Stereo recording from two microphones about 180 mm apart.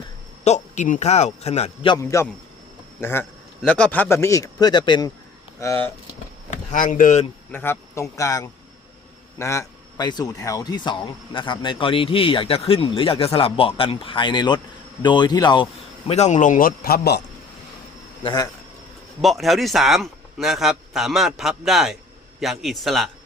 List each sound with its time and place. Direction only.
0.4 s a man's voice: 40° left (ahead or behind)
2.0 s a man's voice: 15° left (ahead or behind)
6.5 s speech: 45° left (ahead or behind)
7.5 s a man's voice: 10° left (ahead or behind)
16.0 s a man's voice: 40° left (ahead or behind); by 17.2 s 60° left (ahead or behind)
18.2 s speech: 25° left (ahead or behind)
19.2 s a man's voice: centre (ahead or behind)